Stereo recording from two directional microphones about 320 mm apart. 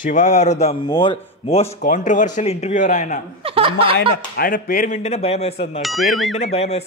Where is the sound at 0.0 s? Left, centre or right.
Left.